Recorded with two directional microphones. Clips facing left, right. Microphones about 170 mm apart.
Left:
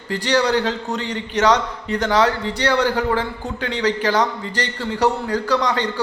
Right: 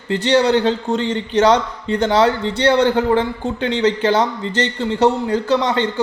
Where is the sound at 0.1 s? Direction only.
25° right (ahead or behind).